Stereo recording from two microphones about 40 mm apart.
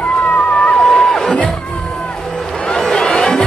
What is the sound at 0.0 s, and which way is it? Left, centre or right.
Crowd, left.